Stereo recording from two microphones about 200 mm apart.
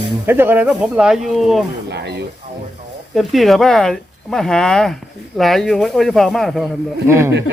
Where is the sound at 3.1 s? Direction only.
Centre (ahead or behind).